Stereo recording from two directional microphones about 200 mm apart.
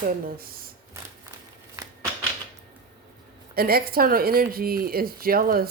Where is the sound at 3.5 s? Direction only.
50° right (ahead or behind).